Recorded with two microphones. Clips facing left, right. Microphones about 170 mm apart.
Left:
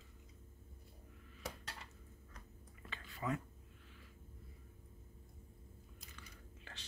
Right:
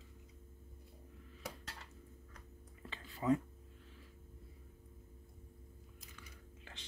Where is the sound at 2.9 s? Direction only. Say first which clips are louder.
Right 7 dB; 30° right (ahead or behind).